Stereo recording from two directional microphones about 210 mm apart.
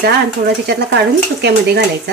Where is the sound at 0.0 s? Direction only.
50° right (ahead or behind).